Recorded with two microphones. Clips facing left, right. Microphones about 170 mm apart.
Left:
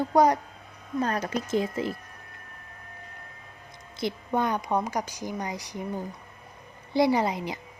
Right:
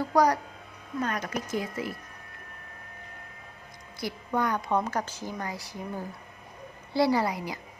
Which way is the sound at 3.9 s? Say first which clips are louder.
Left 2 dB; 20° left (ahead or behind).